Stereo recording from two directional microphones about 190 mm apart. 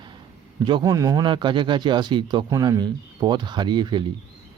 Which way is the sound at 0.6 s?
20° right (ahead or behind).